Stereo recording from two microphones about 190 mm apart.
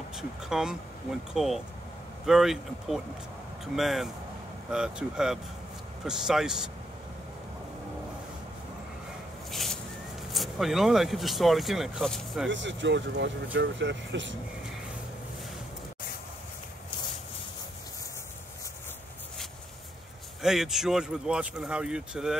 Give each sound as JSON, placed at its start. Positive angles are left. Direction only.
{"t": 0.1, "sound": "speech", "side_deg": -5}
{"t": 9.5, "sound": "a sound", "side_deg": 0}
{"t": 10.3, "sound": "speech", "side_deg": 0}
{"t": 12.4, "sound": "speech", "side_deg": -75}
{"t": 20.4, "sound": "speech", "side_deg": 0}